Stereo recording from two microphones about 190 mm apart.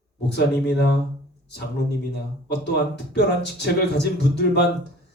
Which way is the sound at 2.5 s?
65° left (ahead or behind).